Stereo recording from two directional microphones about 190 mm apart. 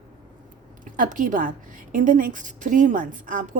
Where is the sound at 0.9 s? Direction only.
45° right (ahead or behind).